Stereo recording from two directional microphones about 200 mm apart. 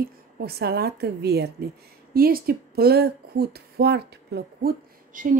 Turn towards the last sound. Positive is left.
turn(degrees=-45)  # may be behind; listen again after turning